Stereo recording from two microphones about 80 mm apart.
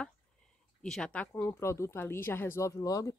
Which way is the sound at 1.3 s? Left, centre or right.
Left.